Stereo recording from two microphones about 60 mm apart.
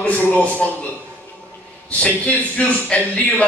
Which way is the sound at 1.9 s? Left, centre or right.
Left.